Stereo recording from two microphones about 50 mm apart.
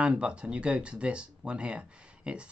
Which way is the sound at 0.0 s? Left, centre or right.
Right.